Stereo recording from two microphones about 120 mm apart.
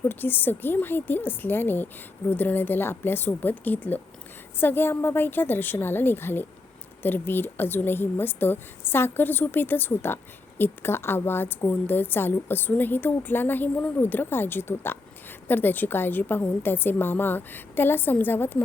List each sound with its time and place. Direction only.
0.0 s a woman's voice: 15° left (ahead or behind)